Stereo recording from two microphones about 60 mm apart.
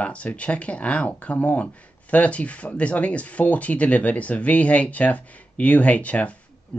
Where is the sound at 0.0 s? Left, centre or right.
Left.